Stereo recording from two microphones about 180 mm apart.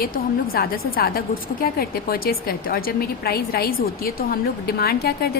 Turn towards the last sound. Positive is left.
turn(degrees=60)  # may be behind; listen again after turning